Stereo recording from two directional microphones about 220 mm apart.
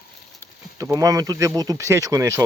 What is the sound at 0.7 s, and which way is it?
Speech, 15° right (ahead or behind).